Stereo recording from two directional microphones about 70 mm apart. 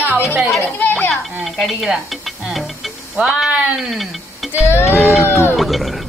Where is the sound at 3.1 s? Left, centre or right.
Centre.